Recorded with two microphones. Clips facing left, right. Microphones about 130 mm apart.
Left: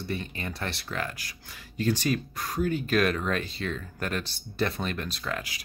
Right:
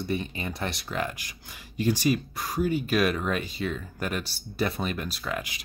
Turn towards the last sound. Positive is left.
turn(degrees=-5)  # may be behind; listen again after turning